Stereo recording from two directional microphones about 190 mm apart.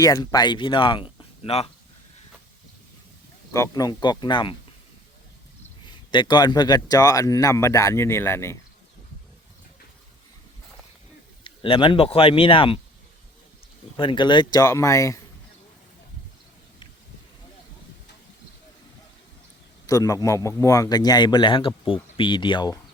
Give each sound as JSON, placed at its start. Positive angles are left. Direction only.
{"t": 0.0, "sound": "speech", "side_deg": 20}
{"t": 3.5, "sound": "speech", "side_deg": 15}
{"t": 5.8, "sound": "speech", "side_deg": 25}
{"t": 11.4, "sound": "speech", "side_deg": 25}
{"t": 13.9, "sound": "speech", "side_deg": 25}
{"t": 19.9, "sound": "speech", "side_deg": 15}